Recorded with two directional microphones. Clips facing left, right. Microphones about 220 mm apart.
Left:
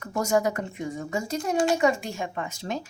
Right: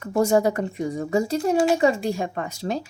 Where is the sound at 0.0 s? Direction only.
30° right (ahead or behind).